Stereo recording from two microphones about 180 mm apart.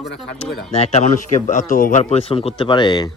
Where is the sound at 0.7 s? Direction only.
35° left (ahead or behind).